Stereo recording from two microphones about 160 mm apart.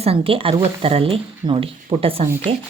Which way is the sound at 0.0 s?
35° right (ahead or behind).